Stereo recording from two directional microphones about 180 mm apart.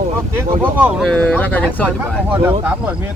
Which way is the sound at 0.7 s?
10° right (ahead or behind).